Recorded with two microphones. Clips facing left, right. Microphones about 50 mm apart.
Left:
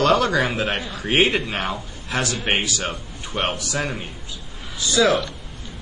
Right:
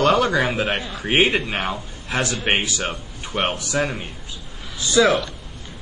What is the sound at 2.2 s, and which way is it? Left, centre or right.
Speech, right.